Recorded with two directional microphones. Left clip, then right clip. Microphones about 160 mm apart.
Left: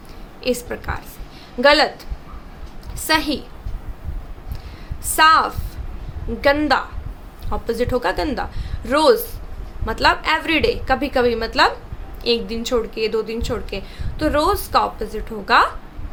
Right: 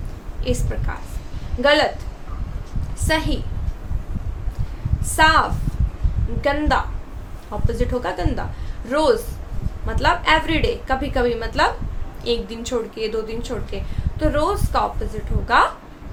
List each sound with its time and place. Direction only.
0.4 s a woman's voice: 35° left (ahead or behind)
3.1 s a woman's voice: 35° left (ahead or behind)
5.1 s a woman's voice: 35° left (ahead or behind)